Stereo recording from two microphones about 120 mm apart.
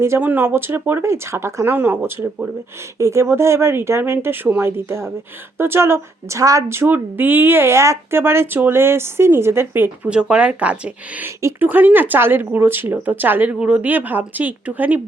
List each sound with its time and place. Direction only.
0.0 s a woman's voice: 20° right (ahead or behind)